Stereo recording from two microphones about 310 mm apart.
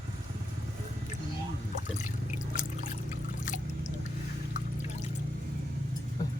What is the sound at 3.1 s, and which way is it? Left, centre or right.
Trickle, left.